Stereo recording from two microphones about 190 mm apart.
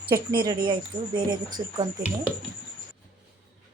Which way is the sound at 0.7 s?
25° right (ahead or behind).